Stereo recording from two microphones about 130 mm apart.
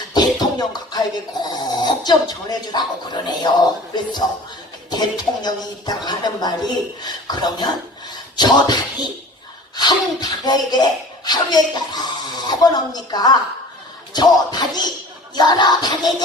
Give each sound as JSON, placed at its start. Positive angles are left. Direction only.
{"t": 0.1, "sound": "speech", "side_deg": 30}